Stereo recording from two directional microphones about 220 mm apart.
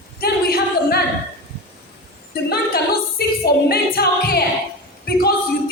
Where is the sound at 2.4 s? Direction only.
45° left (ahead or behind).